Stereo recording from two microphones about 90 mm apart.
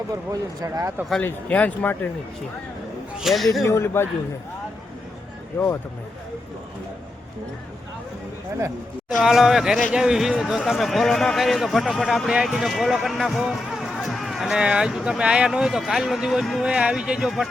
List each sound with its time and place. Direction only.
0.1 s speech: 35° right (ahead or behind)
1.2 s speech: 15° left (ahead or behind)
3.2 s a man's voice: centre (ahead or behind)
3.6 s speech: 30° left (ahead or behind)
5.5 s speech: 30° left (ahead or behind)
9.2 s speech: 5° right (ahead or behind)